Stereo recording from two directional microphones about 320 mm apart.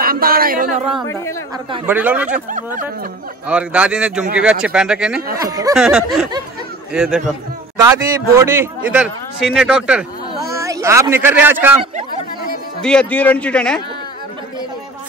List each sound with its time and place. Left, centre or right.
0.0 s speech: right
1.7 s speech: centre
2.3 s speech: right
3.4 s speech: centre
8.4 s speech: centre
12.8 s speech: centre